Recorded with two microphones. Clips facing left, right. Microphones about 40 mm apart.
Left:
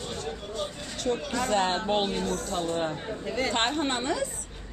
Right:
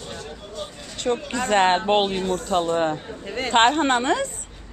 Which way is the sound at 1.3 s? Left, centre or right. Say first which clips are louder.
Right 8 dB; right.